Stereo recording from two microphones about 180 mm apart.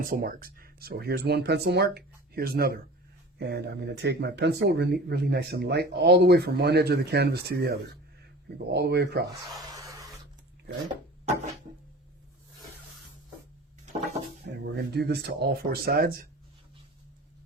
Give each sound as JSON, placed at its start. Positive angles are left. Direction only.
{"t": 0.0, "sound": "speech", "side_deg": -50}
{"t": 9.7, "sound": "a sound", "side_deg": -20}
{"t": 14.4, "sound": "speech", "side_deg": -70}